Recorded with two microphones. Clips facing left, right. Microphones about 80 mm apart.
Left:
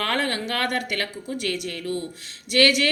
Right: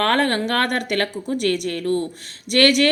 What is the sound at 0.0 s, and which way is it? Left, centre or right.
A woman's voice, right.